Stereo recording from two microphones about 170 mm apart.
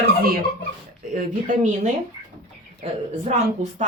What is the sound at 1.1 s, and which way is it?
Speech, 50° right (ahead or behind).